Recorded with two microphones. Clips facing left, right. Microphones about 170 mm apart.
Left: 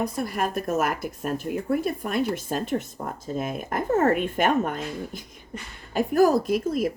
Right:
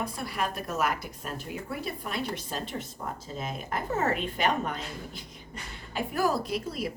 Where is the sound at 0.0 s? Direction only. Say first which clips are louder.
Left 6 dB; 45° left (ahead or behind).